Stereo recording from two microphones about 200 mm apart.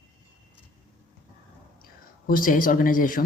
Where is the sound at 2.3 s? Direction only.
45° left (ahead or behind).